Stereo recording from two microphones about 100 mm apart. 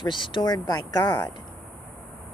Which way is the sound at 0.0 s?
55° left (ahead or behind).